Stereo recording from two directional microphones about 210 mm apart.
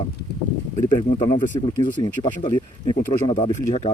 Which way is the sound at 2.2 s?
25° left (ahead or behind).